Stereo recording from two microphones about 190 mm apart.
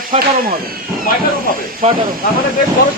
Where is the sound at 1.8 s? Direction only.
35° right (ahead or behind).